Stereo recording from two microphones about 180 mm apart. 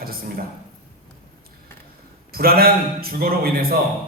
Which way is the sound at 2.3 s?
55° right (ahead or behind).